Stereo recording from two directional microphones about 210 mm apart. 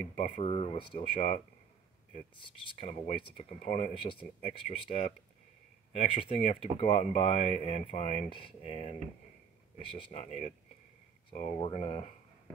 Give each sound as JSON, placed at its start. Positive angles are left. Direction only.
{"t": 0.1, "sound": "speech", "side_deg": 30}